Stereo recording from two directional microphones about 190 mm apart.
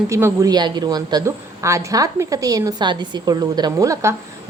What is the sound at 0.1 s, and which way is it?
A woman's voice, 15° right (ahead or behind).